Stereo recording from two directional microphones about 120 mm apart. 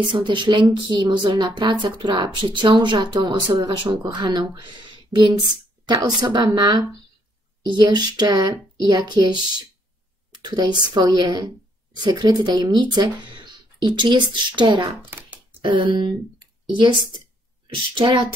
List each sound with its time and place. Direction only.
0.1 s speech: 40° right (ahead or behind)
15.0 s a sound: 15° right (ahead or behind)
15.6 s speech: 40° right (ahead or behind)